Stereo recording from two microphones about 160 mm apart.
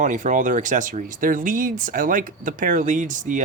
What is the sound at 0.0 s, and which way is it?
Speech, 50° right (ahead or behind).